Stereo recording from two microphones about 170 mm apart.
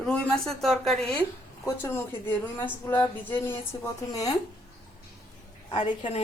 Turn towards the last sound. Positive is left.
turn(degrees=30)  # may be behind; listen again after turning